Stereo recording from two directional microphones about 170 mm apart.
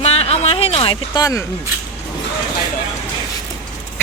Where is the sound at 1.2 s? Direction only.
20° left (ahead or behind).